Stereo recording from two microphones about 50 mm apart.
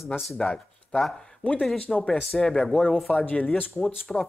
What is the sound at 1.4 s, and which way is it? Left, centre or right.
Speech, left.